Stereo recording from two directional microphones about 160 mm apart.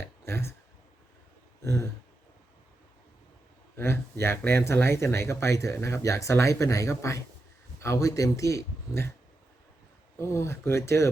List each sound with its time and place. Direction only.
0.3 s speech: 15° left (ahead or behind)
1.6 s speech: 15° left (ahead or behind)
3.8 s speech: 15° left (ahead or behind)
10.2 s speech: 15° left (ahead or behind)